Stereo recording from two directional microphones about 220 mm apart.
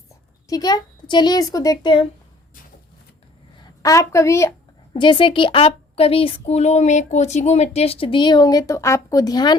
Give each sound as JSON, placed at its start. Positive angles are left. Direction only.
{"t": 0.4, "sound": "speech", "side_deg": 15}
{"t": 3.8, "sound": "speech", "side_deg": 15}